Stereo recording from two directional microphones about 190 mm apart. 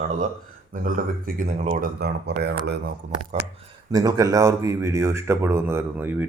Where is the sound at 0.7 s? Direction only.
45° right (ahead or behind); by 2.8 s 65° right (ahead or behind).